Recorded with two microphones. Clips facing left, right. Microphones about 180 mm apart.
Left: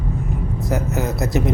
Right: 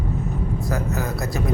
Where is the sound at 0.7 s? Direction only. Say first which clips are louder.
Left 5 dB; 20° left (ahead or behind).